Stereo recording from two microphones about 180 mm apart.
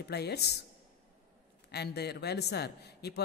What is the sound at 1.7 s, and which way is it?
A woman's voice, 65° left (ahead or behind).